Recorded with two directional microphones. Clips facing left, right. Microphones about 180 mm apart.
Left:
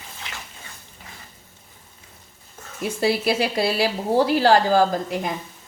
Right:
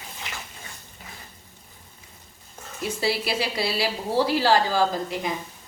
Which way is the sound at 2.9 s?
50° left (ahead or behind).